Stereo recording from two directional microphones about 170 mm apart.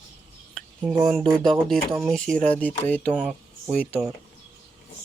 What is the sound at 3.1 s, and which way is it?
Speech, 5° right (ahead or behind).